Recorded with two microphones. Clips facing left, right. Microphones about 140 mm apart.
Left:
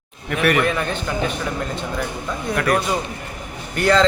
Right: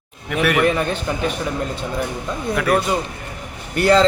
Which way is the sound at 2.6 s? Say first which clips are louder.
Right 1 dB; centre (ahead or behind).